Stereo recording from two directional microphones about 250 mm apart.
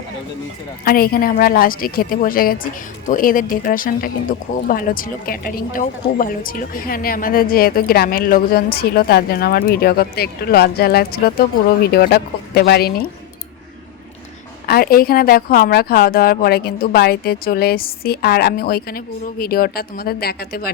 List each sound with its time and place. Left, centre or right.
0.9 s speech: left
14.7 s speech: left